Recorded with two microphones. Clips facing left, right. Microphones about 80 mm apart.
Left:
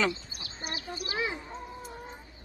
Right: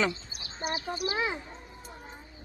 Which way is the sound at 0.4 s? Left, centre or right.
Right.